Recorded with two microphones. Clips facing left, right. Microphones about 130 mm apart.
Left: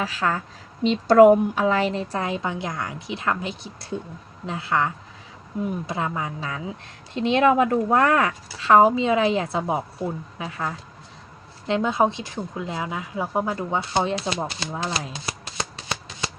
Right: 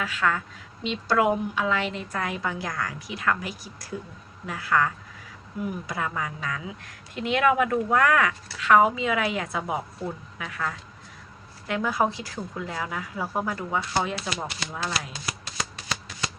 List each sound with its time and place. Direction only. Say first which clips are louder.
0.0 s a woman's voice: left 2 dB; 35° left (ahead or behind)
0.9 s a woman's voice: left 10 dB; 45° left (ahead or behind); by 16.3 s 25° left (ahead or behind)